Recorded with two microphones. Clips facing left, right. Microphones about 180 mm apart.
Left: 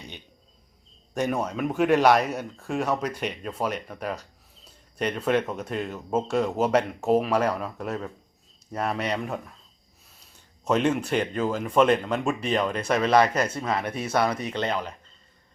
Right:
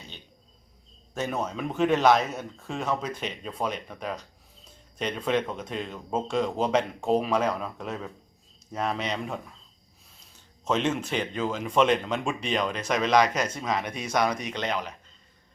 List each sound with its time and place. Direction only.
1.1 s a man's voice: 10° left (ahead or behind)
10.6 s a man's voice: 10° left (ahead or behind)
14.3 s speech: 30° left (ahead or behind)